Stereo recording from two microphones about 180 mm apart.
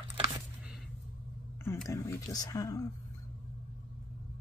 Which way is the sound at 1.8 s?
15° left (ahead or behind).